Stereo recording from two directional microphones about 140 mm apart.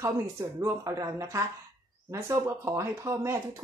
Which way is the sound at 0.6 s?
25° right (ahead or behind).